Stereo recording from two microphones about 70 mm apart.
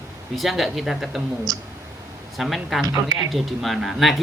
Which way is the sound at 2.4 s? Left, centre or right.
Centre.